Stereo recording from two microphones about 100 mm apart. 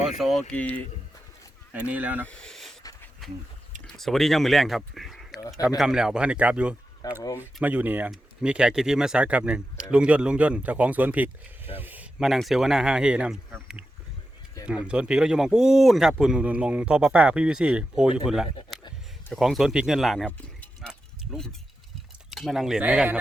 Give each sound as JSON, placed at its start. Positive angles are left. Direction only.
{"t": 0.2, "sound": "speech", "side_deg": 0}
{"t": 0.4, "sound": "speech", "side_deg": 15}
{"t": 1.9, "sound": "speech", "side_deg": -15}
{"t": 2.2, "sound": "a sound", "side_deg": 10}
{"t": 3.2, "sound": "speech", "side_deg": 0}
{"t": 7.0, "sound": "speech", "side_deg": 40}
{"t": 7.6, "sound": "speech", "side_deg": -15}
{"t": 11.8, "sound": "a sound", "side_deg": -20}
{"t": 12.2, "sound": "speech", "side_deg": 0}
{"t": 14.7, "sound": "speech", "side_deg": -10}
{"t": 19.3, "sound": "speech", "side_deg": 0}
{"t": 20.2, "sound": "a sound", "side_deg": 10}
{"t": 22.3, "sound": "speech", "side_deg": -5}
{"t": 22.8, "sound": "speech", "side_deg": -15}